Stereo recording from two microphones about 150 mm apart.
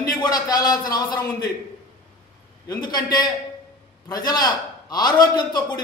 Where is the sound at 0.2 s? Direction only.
25° left (ahead or behind).